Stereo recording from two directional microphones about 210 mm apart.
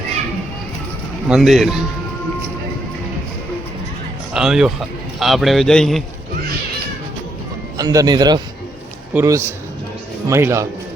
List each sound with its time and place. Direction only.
1.3 s a man's voice: centre (ahead or behind)
4.4 s a man's voice: centre (ahead or behind)
7.8 s a man's voice: 15° right (ahead or behind)